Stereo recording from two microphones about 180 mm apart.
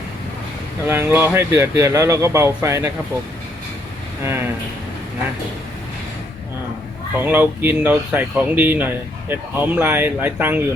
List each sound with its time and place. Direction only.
0.9 s speech: 15° right (ahead or behind)
4.2 s speech: 15° right (ahead or behind)
7.2 s speech: 10° right (ahead or behind)